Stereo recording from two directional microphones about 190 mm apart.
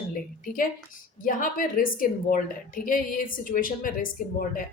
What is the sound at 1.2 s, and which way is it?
A woman's voice, 45° left (ahead or behind).